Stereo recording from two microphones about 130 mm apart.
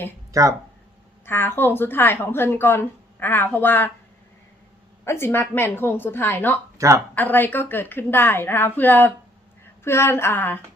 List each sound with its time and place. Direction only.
0.3 s speech: 25° right (ahead or behind)
1.2 s a woman's voice: 15° left (ahead or behind)
5.0 s a woman's voice: 20° left (ahead or behind)
6.7 s speech: 25° right (ahead or behind)
7.2 s a woman's voice: 15° left (ahead or behind)
9.8 s a sound: 20° left (ahead or behind)